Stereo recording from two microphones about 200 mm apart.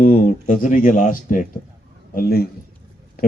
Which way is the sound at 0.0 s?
40° left (ahead or behind).